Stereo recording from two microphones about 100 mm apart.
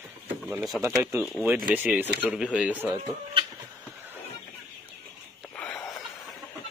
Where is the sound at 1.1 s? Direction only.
30° right (ahead or behind).